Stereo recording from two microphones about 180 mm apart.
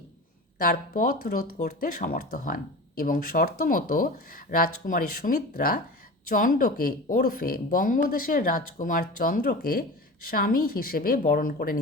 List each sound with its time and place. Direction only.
0.6 s speech: 50° left (ahead or behind)